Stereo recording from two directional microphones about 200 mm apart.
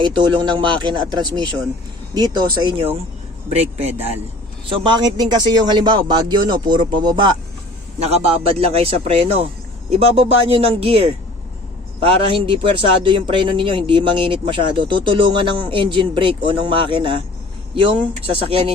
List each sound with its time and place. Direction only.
0.0 s a man's voice: 25° right (ahead or behind)